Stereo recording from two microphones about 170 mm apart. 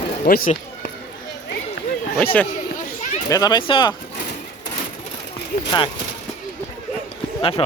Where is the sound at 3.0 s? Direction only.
45° left (ahead or behind).